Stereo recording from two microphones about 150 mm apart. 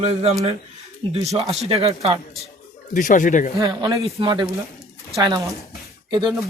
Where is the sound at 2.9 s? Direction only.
60° left (ahead or behind).